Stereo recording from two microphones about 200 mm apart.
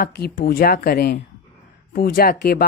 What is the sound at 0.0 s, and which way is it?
Speech, 45° left (ahead or behind).